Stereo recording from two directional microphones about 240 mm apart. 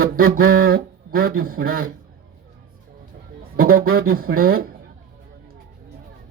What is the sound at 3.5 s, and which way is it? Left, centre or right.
A man's voice, right.